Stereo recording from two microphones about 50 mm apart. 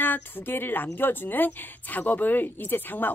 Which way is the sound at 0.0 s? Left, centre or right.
Left.